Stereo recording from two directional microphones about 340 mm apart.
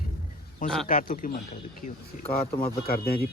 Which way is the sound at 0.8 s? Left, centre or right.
Left.